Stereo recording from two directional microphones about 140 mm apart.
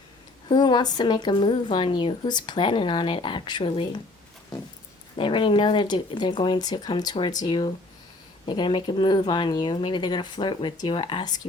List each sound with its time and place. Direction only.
0.4 s speech: 30° left (ahead or behind)
5.1 s speech: 35° left (ahead or behind)